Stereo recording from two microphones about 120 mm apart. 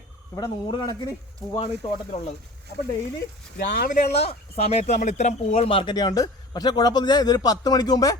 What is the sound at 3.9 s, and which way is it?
Speech, 60° left (ahead or behind).